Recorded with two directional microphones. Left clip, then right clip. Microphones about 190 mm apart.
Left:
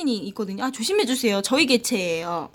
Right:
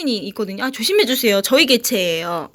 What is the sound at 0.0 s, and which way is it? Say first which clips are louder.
Speech: right 5 dB; 10° right (ahead or behind).